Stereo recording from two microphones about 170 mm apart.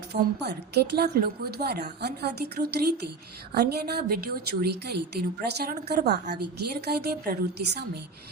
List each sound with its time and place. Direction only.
0.1 s a woman's voice: 75° right (ahead or behind)